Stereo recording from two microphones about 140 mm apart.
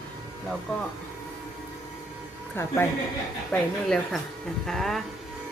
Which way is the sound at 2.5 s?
15° left (ahead or behind).